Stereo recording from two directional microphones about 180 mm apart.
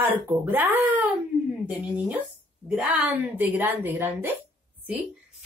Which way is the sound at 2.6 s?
10° right (ahead or behind).